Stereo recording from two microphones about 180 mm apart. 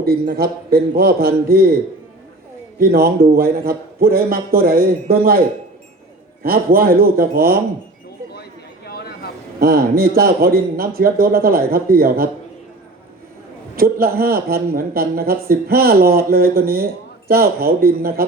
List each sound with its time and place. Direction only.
0.0 s speech: 60° right (ahead or behind)
2.7 s speech: 55° right (ahead or behind)
6.4 s speech: 55° right (ahead or behind)
8.4 s a sound: 60° left (ahead or behind)
9.6 s speech: 55° right (ahead or behind)
13.7 s speech: 55° right (ahead or behind)